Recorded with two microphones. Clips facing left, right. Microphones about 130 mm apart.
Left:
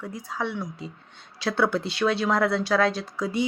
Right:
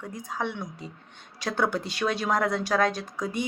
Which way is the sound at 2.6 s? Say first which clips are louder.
Left 2 dB; 45° right (ahead or behind).